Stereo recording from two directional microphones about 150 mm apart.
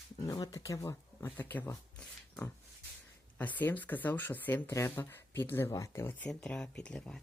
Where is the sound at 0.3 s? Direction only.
25° left (ahead or behind).